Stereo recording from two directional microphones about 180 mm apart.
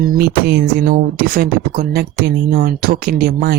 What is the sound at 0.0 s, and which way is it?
Speech, 55° right (ahead or behind).